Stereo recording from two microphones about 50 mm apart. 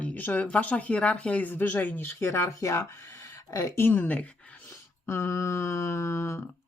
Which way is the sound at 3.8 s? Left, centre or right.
Left.